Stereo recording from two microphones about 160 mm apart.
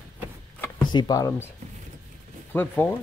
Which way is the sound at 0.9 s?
25° left (ahead or behind).